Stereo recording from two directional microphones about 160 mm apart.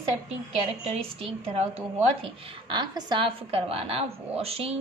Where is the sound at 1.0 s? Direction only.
35° right (ahead or behind).